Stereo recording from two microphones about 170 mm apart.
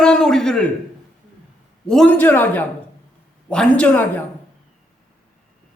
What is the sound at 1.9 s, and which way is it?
A man's voice, 5° left (ahead or behind).